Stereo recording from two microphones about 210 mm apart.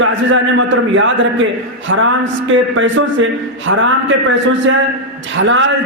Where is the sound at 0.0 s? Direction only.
65° right (ahead or behind).